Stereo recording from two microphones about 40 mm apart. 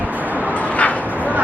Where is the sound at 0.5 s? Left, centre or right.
Left.